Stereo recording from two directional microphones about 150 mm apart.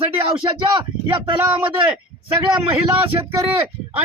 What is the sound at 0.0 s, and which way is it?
Speech, 35° right (ahead or behind).